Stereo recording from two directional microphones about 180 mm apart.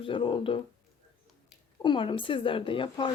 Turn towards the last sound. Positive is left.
turn(degrees=30)  # may be behind; listen again after turning